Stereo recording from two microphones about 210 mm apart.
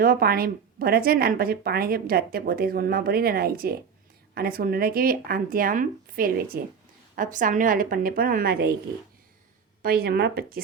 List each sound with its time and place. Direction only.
0.0 s a woman's voice: 45° right (ahead or behind)
9.8 s a woman's voice: 45° right (ahead or behind)